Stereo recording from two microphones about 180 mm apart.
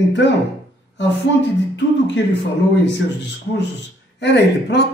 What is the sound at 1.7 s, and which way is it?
Speech, 75° left (ahead or behind).